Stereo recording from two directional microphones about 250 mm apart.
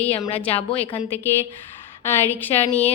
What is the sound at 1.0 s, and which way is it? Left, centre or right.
A woman's voice, centre.